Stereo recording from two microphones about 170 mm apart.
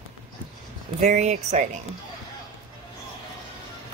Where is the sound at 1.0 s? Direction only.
45° right (ahead or behind).